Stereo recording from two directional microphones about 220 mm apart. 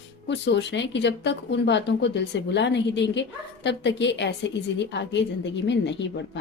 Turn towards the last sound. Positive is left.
turn(degrees=50)  # may be behind; listen again after turning